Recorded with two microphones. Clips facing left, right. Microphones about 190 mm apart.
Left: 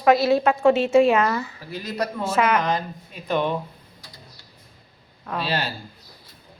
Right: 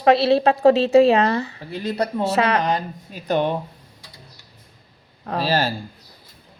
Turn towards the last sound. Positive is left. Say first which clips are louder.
# right 5 dB
turn(degrees=-45)  # may be behind; listen again after turning